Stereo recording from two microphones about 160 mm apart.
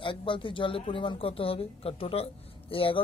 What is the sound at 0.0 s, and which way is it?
Speech, 30° left (ahead or behind).